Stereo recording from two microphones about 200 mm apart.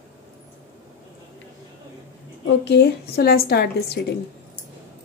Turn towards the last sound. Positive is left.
turn(degrees=55)  # may be behind; listen again after turning